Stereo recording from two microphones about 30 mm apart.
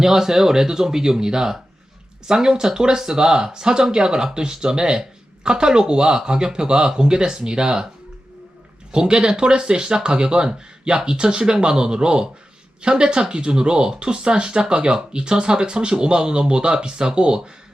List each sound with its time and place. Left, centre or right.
0.0 s speech: centre
8.9 s speech: right